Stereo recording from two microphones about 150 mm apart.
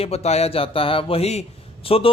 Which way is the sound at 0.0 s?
45° left (ahead or behind).